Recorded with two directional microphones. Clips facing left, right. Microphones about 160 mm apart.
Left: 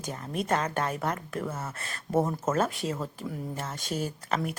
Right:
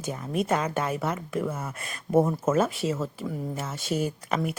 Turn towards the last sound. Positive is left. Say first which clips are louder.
# right 3 dB
turn(degrees=-10)  # may be behind; listen again after turning